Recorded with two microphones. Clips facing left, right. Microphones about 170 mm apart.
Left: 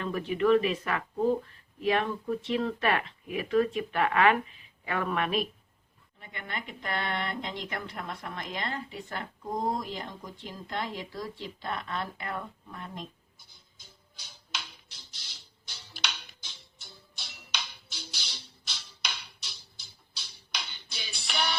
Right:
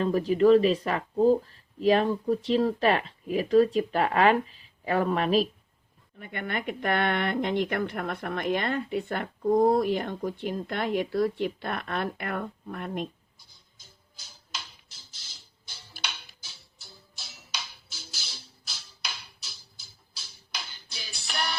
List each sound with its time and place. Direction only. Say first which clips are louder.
0.0 s speech: right 6 dB; 35° right (ahead or behind)
6.1 s speech: right 7 dB; 60° right (ahead or behind)
13.5 s a sound: left 1 dB; centre (ahead or behind)
16.0 s music: left 1 dB; 5° right (ahead or behind)